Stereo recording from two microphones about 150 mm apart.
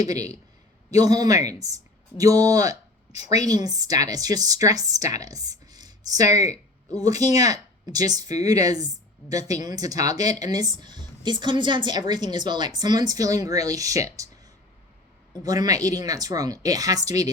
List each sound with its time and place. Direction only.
0.0 s a woman's voice: 25° right (ahead or behind)
15.4 s a woman's voice: 25° right (ahead or behind)